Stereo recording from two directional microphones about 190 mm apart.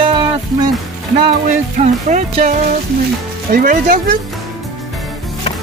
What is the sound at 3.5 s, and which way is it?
Speech, 50° right (ahead or behind).